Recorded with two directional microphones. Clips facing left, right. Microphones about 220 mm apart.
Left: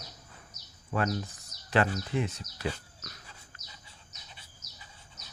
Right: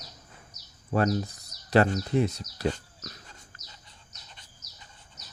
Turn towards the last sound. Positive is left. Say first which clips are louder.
# even
turn(degrees=5)  # may be behind; listen again after turning